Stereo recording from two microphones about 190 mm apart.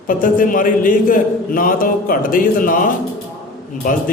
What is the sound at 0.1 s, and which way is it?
A man's voice, 45° left (ahead or behind).